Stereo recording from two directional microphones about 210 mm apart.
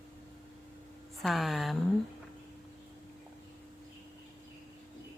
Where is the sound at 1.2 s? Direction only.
Centre (ahead or behind).